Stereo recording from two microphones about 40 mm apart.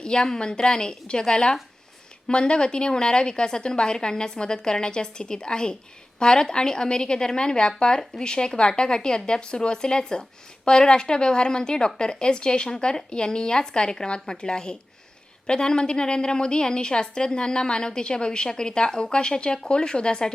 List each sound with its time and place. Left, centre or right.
0.0 s a woman's voice: centre